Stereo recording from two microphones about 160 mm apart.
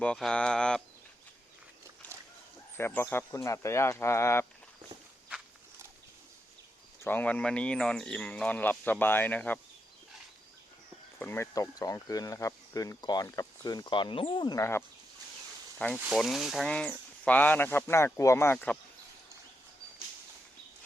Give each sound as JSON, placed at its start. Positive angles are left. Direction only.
{"t": 0.0, "sound": "speech", "side_deg": 5}
{"t": 2.7, "sound": "speech", "side_deg": 15}
{"t": 7.0, "sound": "speech", "side_deg": 10}
{"t": 11.2, "sound": "speech", "side_deg": 15}
{"t": 14.6, "sound": "speech", "side_deg": 15}
{"t": 16.0, "sound": "speech", "side_deg": -5}
{"t": 18.5, "sound": "speech", "side_deg": 5}